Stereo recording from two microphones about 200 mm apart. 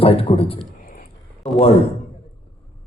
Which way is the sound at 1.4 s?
5° left (ahead or behind).